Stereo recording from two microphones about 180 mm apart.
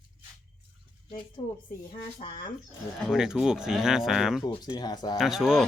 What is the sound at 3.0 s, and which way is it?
Speech, centre (ahead or behind).